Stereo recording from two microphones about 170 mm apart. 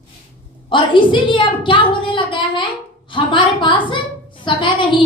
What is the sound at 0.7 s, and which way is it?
A woman's voice, 30° left (ahead or behind).